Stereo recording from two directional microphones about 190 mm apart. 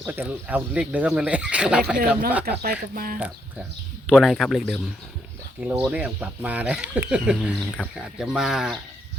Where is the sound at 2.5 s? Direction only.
50° right (ahead or behind).